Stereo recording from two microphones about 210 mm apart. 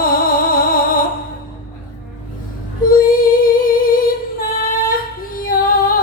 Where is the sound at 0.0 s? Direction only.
45° left (ahead or behind).